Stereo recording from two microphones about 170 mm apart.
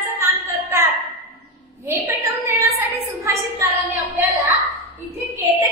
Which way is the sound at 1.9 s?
15° right (ahead or behind).